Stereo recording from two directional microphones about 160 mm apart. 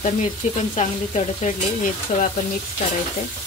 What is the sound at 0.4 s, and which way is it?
Stir, 50° left (ahead or behind).